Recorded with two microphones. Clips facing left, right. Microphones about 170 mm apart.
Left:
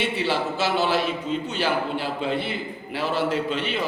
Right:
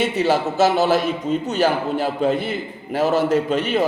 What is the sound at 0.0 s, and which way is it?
A man's voice, 45° right (ahead or behind).